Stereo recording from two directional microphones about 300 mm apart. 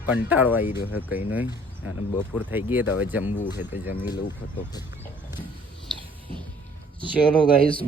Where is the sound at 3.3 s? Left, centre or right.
Left.